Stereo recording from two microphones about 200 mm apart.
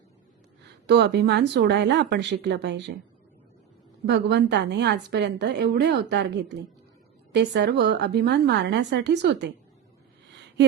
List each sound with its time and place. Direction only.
0.9 s a woman's voice: 60° right (ahead or behind)
4.0 s a woman's voice: 55° right (ahead or behind)